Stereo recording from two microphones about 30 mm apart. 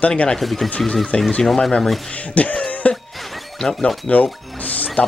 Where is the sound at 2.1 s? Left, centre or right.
Left.